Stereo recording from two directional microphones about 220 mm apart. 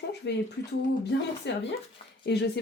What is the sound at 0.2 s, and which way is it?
Speech, 50° left (ahead or behind).